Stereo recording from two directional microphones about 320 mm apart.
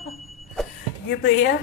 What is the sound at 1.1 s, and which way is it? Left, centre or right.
Speech, left.